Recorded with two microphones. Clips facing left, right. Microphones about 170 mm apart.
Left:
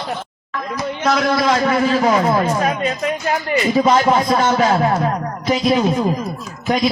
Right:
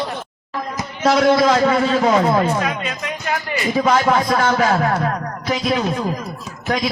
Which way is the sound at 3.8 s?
15° left (ahead or behind).